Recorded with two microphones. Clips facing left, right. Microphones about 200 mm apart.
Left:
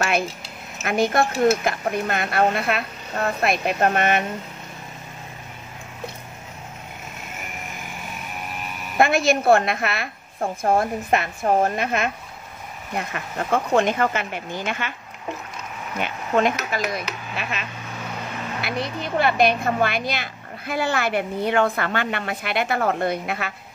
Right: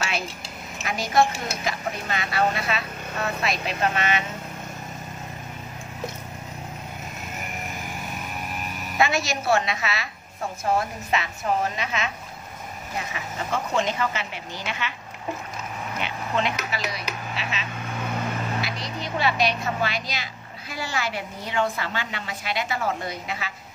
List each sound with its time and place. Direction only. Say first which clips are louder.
0.8 s a woman's voice: left 2 dB; 55° left (ahead or behind)
8.9 s a woman's voice: left 6 dB; 55° left (ahead or behind)
16.0 s a woman's voice: left 6 dB; 50° left (ahead or behind)